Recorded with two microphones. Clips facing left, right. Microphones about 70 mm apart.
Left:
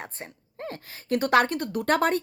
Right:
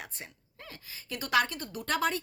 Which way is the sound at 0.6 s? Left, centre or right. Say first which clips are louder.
Left 11 dB; left.